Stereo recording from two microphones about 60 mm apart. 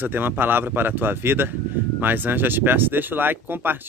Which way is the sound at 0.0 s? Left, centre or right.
Right.